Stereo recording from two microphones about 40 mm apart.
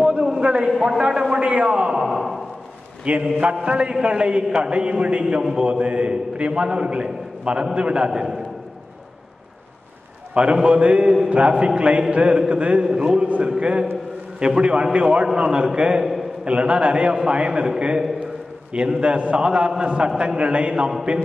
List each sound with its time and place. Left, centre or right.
0.2 s a sound: centre
0.8 s a man's voice: centre
2.0 s a sound: centre
3.1 s a man's voice: right
10.3 s a man's voice: right
12.8 s a man's voice: centre
16.0 s a sound: centre
16.4 s a man's voice: right
18.9 s a man's voice: right